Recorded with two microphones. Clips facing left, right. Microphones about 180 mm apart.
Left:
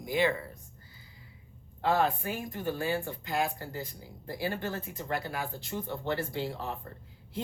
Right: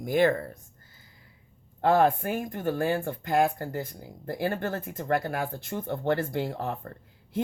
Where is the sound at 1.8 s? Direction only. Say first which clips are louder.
Right 6 dB; 50° right (ahead or behind).